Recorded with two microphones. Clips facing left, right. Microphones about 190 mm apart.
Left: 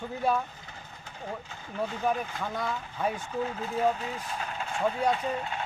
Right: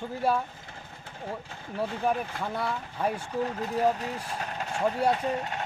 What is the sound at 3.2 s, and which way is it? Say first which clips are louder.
Speech: right 2 dB; 35° right (ahead or behind).